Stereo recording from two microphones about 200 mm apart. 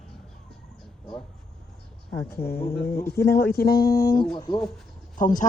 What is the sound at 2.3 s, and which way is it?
Speech, 50° left (ahead or behind).